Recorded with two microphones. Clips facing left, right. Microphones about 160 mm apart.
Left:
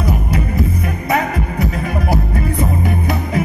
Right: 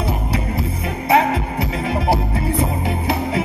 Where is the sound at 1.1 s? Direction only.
50° left (ahead or behind).